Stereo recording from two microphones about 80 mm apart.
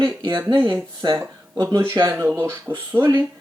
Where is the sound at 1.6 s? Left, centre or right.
Right.